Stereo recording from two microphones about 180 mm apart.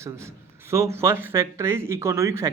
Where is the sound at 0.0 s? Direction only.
15° right (ahead or behind).